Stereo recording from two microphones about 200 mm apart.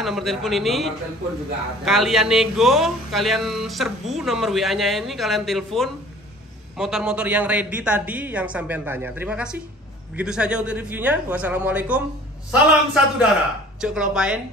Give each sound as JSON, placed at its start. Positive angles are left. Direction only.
{"t": 0.0, "sound": "a woman's voice", "side_deg": 0}